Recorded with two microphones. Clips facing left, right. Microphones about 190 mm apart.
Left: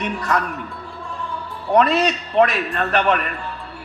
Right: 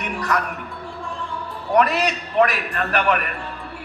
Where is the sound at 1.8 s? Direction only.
25° left (ahead or behind).